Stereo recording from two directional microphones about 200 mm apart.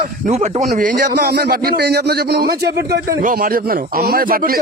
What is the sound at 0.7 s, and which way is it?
Speech, 50° right (ahead or behind).